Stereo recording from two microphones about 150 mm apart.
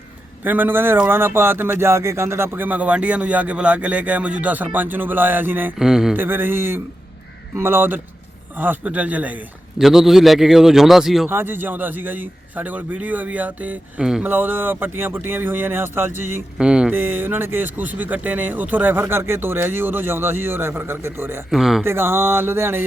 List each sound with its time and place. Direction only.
0.4 s speech: 10° right (ahead or behind)
6.1 s a man's voice: 15° right (ahead or behind)
11.3 s speech: 15° right (ahead or behind)
21.5 s a man's voice: centre (ahead or behind)
21.8 s speech: 15° right (ahead or behind)